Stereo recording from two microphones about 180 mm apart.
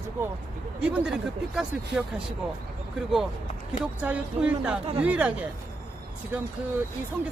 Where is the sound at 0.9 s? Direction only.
5° right (ahead or behind).